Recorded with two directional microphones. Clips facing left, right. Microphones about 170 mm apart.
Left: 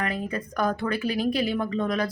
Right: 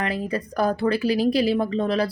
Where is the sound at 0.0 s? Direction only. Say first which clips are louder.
Right 3 dB; 35° right (ahead or behind).